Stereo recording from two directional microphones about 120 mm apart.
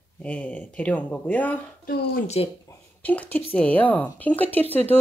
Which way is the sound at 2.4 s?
55° left (ahead or behind).